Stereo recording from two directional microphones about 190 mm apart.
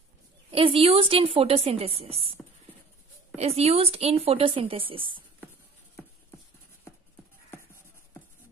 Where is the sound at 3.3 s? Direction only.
35° right (ahead or behind).